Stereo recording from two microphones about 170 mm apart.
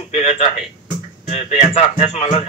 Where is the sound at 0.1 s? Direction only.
35° left (ahead or behind).